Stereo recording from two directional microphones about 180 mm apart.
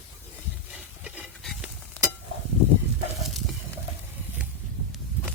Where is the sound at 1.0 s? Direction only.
5° right (ahead or behind).